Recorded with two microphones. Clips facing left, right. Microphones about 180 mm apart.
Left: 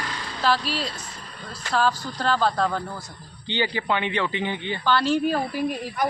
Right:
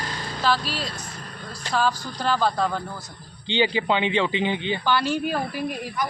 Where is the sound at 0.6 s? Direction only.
45° right (ahead or behind).